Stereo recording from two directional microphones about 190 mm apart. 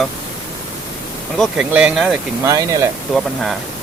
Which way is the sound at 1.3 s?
Centre (ahead or behind).